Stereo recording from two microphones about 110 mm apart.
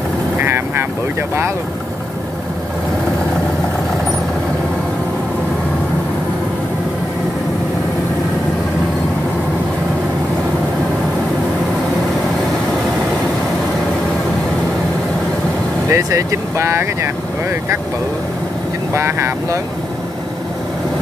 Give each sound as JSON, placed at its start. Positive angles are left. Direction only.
{"t": 0.4, "sound": "vehicle", "side_deg": -20}
{"t": 15.9, "sound": "speech", "side_deg": -30}
{"t": 18.9, "sound": "speech", "side_deg": -20}